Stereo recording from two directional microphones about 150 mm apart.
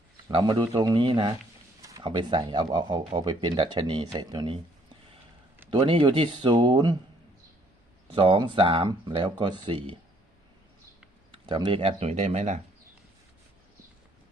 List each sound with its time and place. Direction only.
0.3 s speech: 35° right (ahead or behind)
5.8 s speech: 35° right (ahead or behind)
8.1 s speech: 35° right (ahead or behind)
11.3 s speech: 35° right (ahead or behind); by 12.6 s 50° right (ahead or behind)